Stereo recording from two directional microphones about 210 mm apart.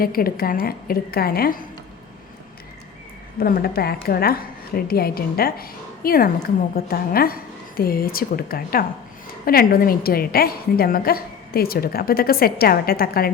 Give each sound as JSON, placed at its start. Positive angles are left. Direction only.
{"t": 0.0, "sound": "a woman's voice", "side_deg": 45}
{"t": 3.4, "sound": "a woman's voice", "side_deg": 45}